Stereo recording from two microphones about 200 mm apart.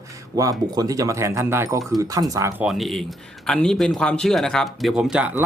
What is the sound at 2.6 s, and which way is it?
Speech, centre (ahead or behind).